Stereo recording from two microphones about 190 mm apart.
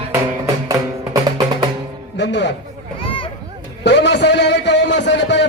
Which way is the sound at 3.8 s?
65° left (ahead or behind).